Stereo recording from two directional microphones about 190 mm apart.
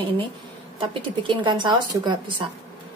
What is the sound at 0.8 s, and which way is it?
Speech, 25° right (ahead or behind).